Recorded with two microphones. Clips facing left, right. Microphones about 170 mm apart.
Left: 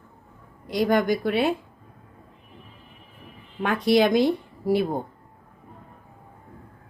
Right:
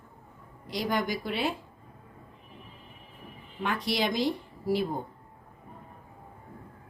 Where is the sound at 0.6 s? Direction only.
55° left (ahead or behind).